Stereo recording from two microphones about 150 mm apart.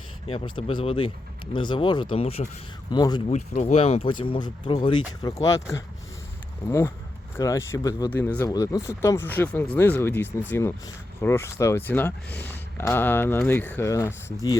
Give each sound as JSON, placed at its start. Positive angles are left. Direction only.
{"t": 0.3, "sound": "speech", "side_deg": 35}
{"t": 3.2, "sound": "speech", "side_deg": 50}
{"t": 5.2, "sound": "speech", "side_deg": 20}